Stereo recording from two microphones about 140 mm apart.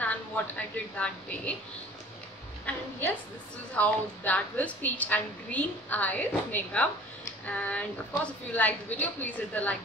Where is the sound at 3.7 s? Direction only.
10° left (ahead or behind).